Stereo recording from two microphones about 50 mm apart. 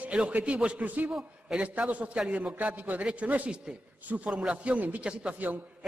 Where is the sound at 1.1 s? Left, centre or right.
Centre.